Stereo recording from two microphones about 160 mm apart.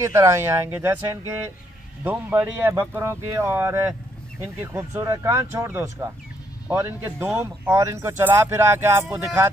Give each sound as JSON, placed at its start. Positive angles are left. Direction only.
{"t": 0.0, "sound": "speech", "side_deg": -15}